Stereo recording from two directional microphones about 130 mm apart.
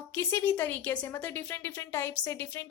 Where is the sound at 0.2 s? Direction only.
15° left (ahead or behind).